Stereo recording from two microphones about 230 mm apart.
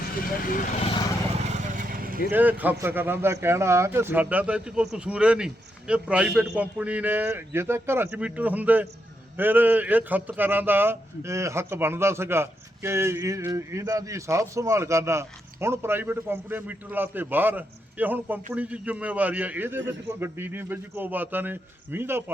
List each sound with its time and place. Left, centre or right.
0.4 s speech: left
1.5 s vehicle: right
2.3 s speech: centre